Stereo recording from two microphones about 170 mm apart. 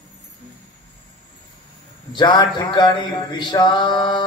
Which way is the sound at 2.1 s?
25° left (ahead or behind).